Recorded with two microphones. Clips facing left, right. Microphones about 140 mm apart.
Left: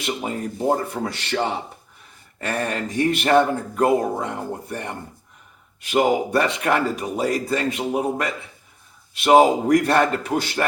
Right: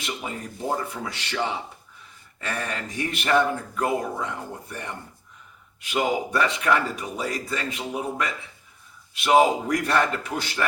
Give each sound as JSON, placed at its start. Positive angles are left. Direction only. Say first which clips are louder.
{"t": 0.1, "sound": "speech", "louder": "left 7 dB", "side_deg": 40}